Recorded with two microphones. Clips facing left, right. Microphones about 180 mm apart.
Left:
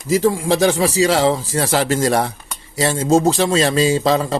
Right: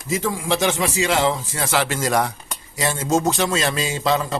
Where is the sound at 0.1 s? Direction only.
30° left (ahead or behind).